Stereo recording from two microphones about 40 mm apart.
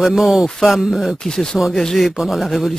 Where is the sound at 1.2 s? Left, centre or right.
Centre.